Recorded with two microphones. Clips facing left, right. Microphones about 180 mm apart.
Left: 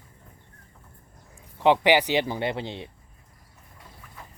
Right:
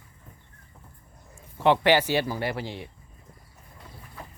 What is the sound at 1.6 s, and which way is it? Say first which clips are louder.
Speech: left 1 dB; 15° left (ahead or behind).